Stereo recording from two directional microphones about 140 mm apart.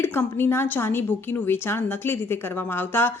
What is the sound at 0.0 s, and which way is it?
A woman's voice, 15° left (ahead or behind).